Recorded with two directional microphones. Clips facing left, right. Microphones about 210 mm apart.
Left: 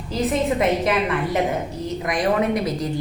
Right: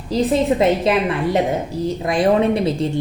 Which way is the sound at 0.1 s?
30° right (ahead or behind).